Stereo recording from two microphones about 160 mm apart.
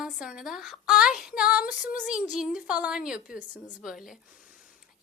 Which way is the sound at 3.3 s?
50° left (ahead or behind).